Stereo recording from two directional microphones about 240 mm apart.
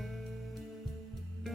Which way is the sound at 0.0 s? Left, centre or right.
Centre.